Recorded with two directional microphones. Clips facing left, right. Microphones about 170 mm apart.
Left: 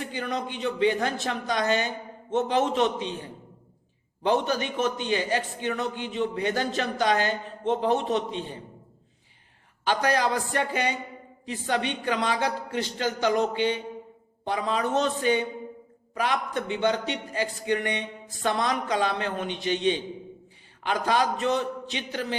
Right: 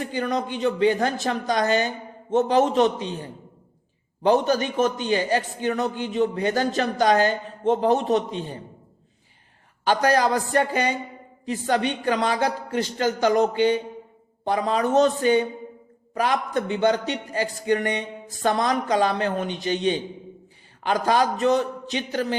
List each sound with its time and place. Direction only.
0.1 s a man's voice: 40° right (ahead or behind)
4.2 s a man's voice: 40° right (ahead or behind)
9.8 s a man's voice: 40° right (ahead or behind)